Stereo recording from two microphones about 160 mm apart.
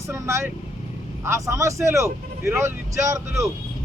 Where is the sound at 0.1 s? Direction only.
15° right (ahead or behind).